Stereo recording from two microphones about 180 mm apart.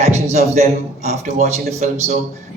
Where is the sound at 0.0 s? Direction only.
40° right (ahead or behind).